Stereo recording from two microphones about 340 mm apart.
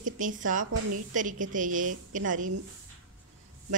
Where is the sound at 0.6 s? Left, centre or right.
Right.